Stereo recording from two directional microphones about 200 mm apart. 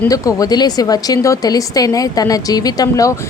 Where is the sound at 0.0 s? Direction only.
15° left (ahead or behind).